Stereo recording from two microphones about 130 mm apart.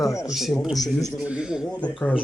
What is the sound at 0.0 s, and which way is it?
Speech, 25° left (ahead or behind).